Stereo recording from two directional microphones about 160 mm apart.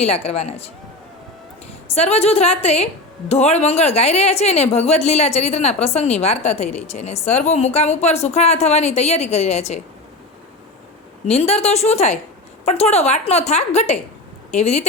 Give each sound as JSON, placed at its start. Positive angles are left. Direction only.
{"t": 0.0, "sound": "a woman's voice", "side_deg": 40}
{"t": 2.0, "sound": "a woman's voice", "side_deg": 40}
{"t": 11.3, "sound": "a woman's voice", "side_deg": 40}